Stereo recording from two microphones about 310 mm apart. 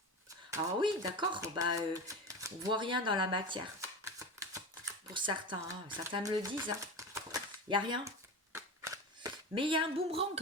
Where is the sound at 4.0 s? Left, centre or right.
Centre.